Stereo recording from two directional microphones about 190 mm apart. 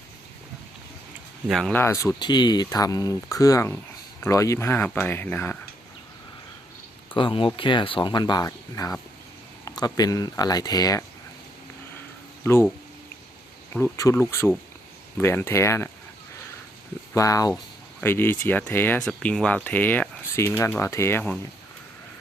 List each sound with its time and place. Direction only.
1.5 s speech: centre (ahead or behind)
1.8 s speech: 15° left (ahead or behind)
7.1 s speech: 25° left (ahead or behind)
12.4 s speech: 15° left (ahead or behind)
13.7 s speech: 15° left (ahead or behind)
17.2 s speech: 15° left (ahead or behind)